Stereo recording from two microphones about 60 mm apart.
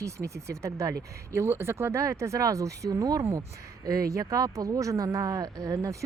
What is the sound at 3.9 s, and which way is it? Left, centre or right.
Speech, right.